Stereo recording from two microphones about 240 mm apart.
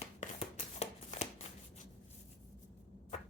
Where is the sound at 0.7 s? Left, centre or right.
Left.